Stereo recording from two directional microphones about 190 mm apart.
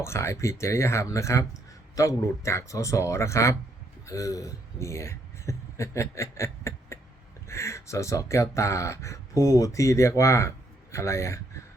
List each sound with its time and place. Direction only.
0.0 s speech: 15° left (ahead or behind)